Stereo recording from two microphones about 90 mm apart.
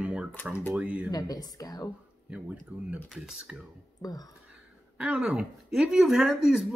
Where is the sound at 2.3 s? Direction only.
15° right (ahead or behind).